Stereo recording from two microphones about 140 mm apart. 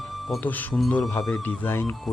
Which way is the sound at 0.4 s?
10° left (ahead or behind).